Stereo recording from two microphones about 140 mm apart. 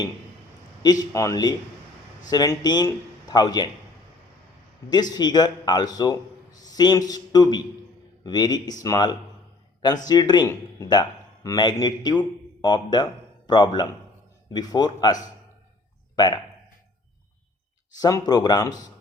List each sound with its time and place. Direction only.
0.8 s a man's voice: 25° left (ahead or behind)
4.9 s a man's voice: 30° left (ahead or behind)
17.9 s a man's voice: 25° left (ahead or behind)